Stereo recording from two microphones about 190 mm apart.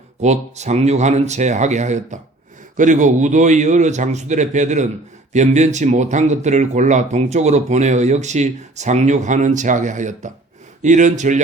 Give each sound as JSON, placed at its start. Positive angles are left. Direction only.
{"t": 0.2, "sound": "speech", "side_deg": -35}